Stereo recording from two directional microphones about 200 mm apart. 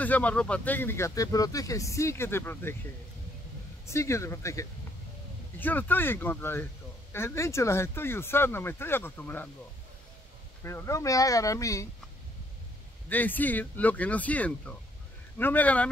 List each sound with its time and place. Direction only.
0.0 s speech: 10° left (ahead or behind)
3.8 s speech: 15° left (ahead or behind)
10.6 s speech: 15° left (ahead or behind)
13.1 s speech: 10° left (ahead or behind)